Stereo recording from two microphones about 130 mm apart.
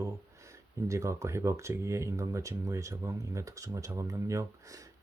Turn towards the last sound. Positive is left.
turn(degrees=-25)  # may be behind; listen again after turning